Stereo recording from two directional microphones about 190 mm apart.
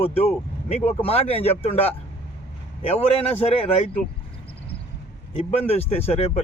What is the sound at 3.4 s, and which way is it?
Speech, 30° left (ahead or behind).